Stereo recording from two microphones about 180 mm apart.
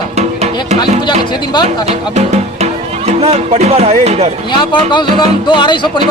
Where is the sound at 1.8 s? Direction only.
35° right (ahead or behind).